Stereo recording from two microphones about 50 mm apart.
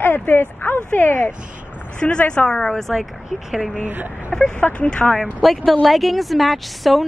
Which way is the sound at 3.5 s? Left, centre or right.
Centre.